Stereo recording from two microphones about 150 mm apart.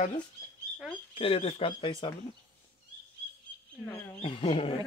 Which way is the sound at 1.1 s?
40° left (ahead or behind).